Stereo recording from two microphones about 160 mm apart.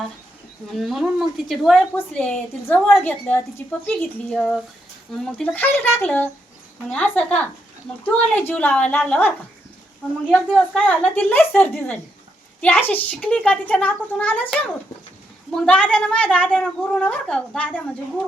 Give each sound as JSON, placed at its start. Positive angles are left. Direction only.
{"t": 0.7, "sound": "a woman's voice", "side_deg": 0}
{"t": 10.3, "sound": "a woman's voice", "side_deg": 5}